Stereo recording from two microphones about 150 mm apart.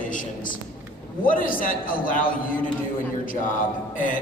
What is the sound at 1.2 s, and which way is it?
Speech, 65° left (ahead or behind).